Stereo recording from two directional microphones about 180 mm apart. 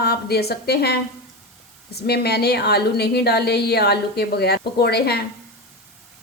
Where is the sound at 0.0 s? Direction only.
60° left (ahead or behind).